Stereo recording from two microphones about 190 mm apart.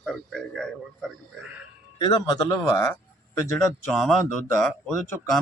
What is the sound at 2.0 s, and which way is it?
Speech, 20° left (ahead or behind).